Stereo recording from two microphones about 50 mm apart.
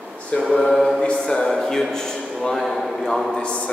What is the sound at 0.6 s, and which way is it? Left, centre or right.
Mantra, centre.